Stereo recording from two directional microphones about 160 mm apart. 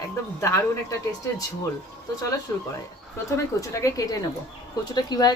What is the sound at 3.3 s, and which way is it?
Speech, 20° left (ahead or behind).